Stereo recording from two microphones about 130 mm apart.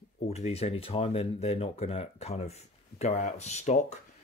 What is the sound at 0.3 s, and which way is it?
Speech, 55° left (ahead or behind).